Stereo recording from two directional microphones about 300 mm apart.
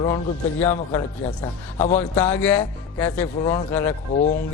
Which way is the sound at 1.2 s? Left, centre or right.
Left.